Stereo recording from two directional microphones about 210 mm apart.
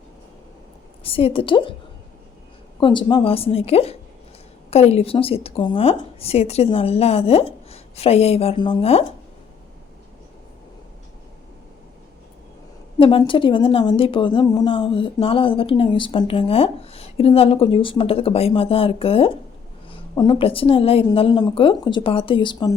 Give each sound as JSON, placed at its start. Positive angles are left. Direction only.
{"t": 1.0, "sound": "a woman's voice", "side_deg": 25}
{"t": 2.8, "sound": "a woman's voice", "side_deg": 25}
{"t": 13.0, "sound": "a woman's voice", "side_deg": 25}